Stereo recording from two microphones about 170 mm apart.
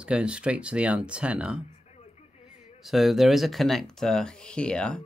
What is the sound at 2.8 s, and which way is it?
Speech, centre (ahead or behind).